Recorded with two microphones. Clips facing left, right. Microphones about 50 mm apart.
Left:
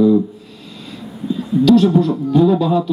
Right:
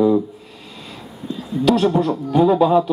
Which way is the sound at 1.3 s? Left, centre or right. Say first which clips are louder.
Left 7 dB; centre.